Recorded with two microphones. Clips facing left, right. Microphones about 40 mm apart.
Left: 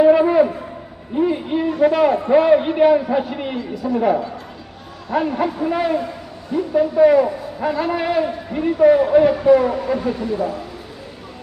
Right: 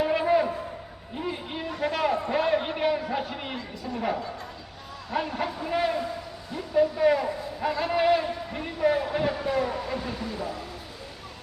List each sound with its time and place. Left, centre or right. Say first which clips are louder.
0.0 s a sound: left 10 dB; centre
1.8 s a man's voice: left 10 dB; centre
3.8 s a man's voice: left 14 dB; left
5.1 s a man's voice: left 9 dB; centre
7.7 s a man's voice: left 8 dB; left
7.9 s a man's voice: left 2 dB; centre
8.2 s a man's voice: left 10 dB; centre
10.0 s speech: left 11 dB; left